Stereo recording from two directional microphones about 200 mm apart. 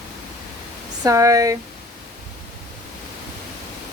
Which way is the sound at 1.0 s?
15° right (ahead or behind).